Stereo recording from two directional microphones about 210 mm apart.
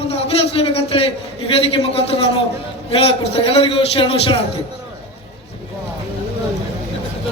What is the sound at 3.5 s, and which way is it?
Speech, 25° left (ahead or behind).